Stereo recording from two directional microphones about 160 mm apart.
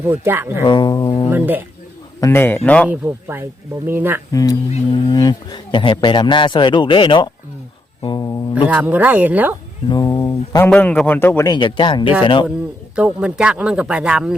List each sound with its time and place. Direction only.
0.0 s speech: 10° right (ahead or behind)
0.6 s speech: 25° left (ahead or behind)
1.3 s speech: 10° right (ahead or behind)
2.2 s a man's voice: 15° left (ahead or behind)
2.9 s speech: 15° right (ahead or behind)
4.3 s a man's voice: 20° left (ahead or behind)
8.0 s a sound: 25° left (ahead or behind)
8.6 s speech: 10° right (ahead or behind)
9.9 s speech: 25° left (ahead or behind)
10.6 s a man's voice: 10° left (ahead or behind)
11.5 s a man's voice: 30° left (ahead or behind)
13.0 s speech: 5° right (ahead or behind)